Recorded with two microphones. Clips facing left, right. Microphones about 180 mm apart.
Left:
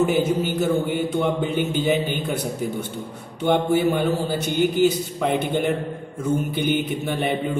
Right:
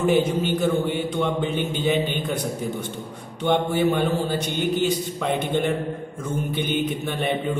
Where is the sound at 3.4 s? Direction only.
10° left (ahead or behind).